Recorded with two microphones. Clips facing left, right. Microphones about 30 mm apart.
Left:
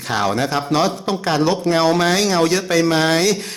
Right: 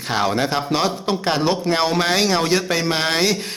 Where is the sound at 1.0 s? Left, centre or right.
Right.